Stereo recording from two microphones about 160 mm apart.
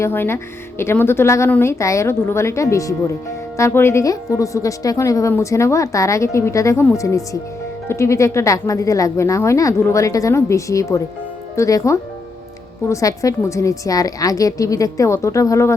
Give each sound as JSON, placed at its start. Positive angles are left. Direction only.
{"t": 0.0, "sound": "speech", "side_deg": 15}